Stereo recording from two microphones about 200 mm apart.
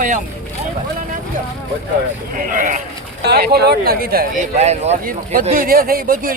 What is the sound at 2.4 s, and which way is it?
Speech, 40° right (ahead or behind).